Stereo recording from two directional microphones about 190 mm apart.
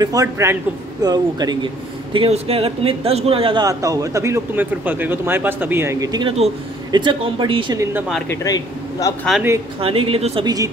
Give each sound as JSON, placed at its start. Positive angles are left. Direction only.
{"t": 0.0, "sound": "speech", "side_deg": -20}
{"t": 2.1, "sound": "speech", "side_deg": -30}
{"t": 8.3, "sound": "a man's voice", "side_deg": 15}
{"t": 9.3, "sound": "speech", "side_deg": 0}
{"t": 9.8, "sound": "speech", "side_deg": -30}